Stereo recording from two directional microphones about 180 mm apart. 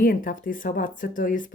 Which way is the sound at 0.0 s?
50° left (ahead or behind).